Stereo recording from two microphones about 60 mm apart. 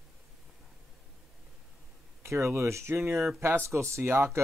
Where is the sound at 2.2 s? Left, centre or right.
Right.